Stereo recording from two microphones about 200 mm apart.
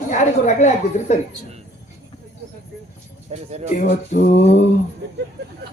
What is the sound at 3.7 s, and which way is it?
Speech, 35° left (ahead or behind).